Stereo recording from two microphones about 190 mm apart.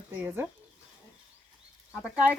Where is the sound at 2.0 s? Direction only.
5° right (ahead or behind).